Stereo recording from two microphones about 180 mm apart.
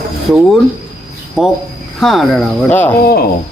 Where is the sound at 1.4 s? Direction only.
Centre (ahead or behind).